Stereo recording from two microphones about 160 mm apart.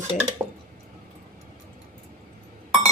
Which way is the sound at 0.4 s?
15° right (ahead or behind).